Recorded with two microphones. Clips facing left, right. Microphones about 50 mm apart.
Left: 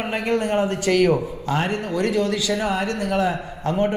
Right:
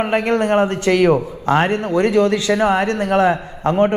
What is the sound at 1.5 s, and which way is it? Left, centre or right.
A man's voice, right.